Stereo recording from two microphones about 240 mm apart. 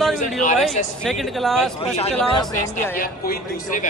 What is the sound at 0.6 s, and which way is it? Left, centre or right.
Speech, centre.